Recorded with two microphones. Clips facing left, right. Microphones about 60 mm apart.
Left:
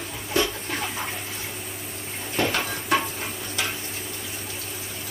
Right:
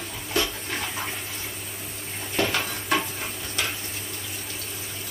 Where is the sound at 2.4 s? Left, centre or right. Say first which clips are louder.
Left 2 dB; centre.